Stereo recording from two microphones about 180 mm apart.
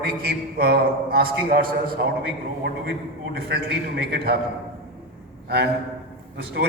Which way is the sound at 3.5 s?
60° right (ahead or behind).